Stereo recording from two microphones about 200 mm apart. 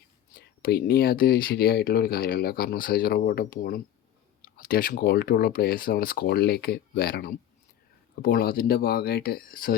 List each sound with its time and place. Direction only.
0.3 s speech: 50° left (ahead or behind)